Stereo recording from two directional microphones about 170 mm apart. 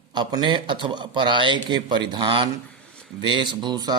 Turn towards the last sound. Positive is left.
turn(degrees=-25)  # may be behind; listen again after turning